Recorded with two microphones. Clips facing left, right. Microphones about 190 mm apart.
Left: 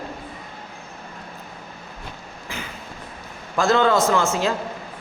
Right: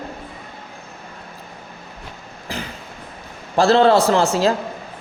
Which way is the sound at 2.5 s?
35° right (ahead or behind).